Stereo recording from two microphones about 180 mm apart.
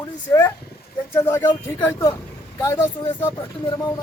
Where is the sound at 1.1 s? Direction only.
15° left (ahead or behind).